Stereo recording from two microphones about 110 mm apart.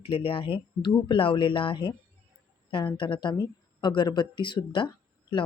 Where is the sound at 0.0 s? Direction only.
55° left (ahead or behind).